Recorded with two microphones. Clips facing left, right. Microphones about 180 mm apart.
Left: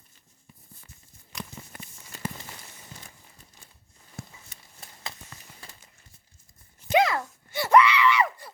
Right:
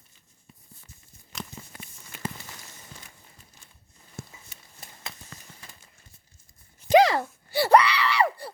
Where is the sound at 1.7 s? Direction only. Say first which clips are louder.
Left 1 dB; 55° left (ahead or behind).